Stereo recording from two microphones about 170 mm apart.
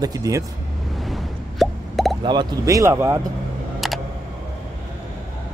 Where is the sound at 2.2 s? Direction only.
25° right (ahead or behind).